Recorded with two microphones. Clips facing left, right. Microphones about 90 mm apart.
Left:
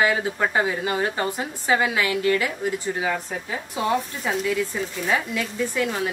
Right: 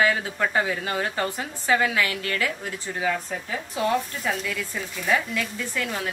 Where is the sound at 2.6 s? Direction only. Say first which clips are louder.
Left 3 dB; 15° left (ahead or behind).